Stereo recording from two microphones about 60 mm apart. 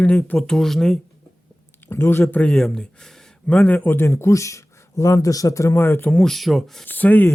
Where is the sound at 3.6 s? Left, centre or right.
Left.